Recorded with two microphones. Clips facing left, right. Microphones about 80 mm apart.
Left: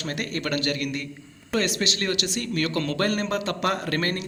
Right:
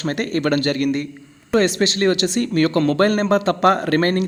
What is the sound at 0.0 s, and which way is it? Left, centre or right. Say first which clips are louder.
Speech: right 9 dB; right.